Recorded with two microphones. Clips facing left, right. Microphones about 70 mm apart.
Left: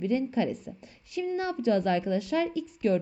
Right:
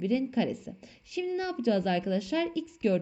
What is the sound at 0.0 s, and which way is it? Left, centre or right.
A woman's voice, left.